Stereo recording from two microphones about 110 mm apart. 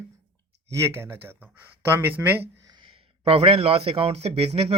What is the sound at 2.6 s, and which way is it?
Speech, 45° right (ahead or behind).